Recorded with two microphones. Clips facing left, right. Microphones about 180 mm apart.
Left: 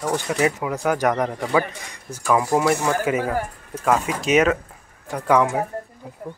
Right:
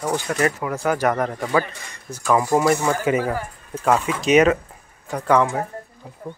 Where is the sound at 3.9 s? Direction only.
40° left (ahead or behind).